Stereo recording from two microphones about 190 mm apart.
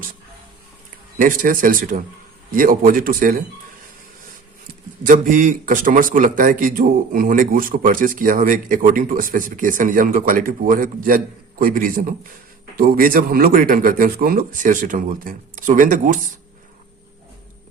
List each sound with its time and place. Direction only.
1.2 s a man's voice: 45° right (ahead or behind)
5.0 s a man's voice: 45° right (ahead or behind)